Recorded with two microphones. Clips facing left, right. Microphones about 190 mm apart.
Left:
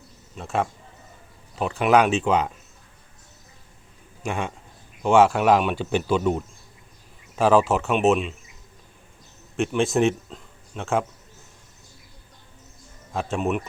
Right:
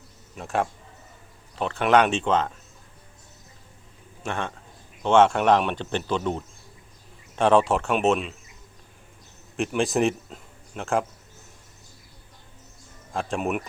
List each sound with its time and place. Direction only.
0.3 s speech: centre (ahead or behind)
4.3 s speech: 10° left (ahead or behind)
9.6 s speech: centre (ahead or behind)
13.1 s speech: centre (ahead or behind)